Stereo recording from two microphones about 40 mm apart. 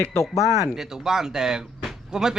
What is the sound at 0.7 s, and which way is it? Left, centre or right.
Speech, centre.